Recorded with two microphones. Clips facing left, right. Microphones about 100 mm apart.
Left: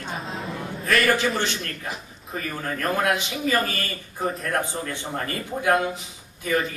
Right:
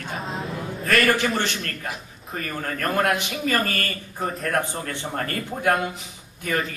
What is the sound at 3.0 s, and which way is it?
Speech, 55° right (ahead or behind).